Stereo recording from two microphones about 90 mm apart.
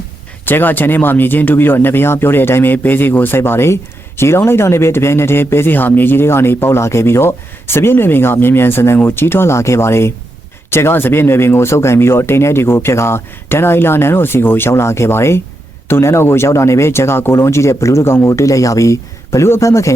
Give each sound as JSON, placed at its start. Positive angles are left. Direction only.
{"t": 0.4, "sound": "speech", "side_deg": 20}